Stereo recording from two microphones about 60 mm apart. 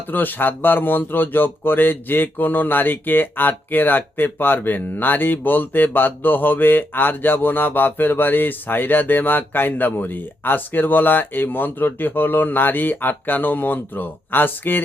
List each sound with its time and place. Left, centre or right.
0.1 s speech: left